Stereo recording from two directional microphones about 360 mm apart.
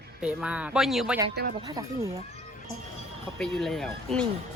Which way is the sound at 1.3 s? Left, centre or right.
Right.